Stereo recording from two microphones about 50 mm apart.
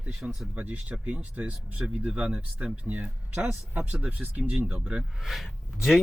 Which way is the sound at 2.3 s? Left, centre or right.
Centre.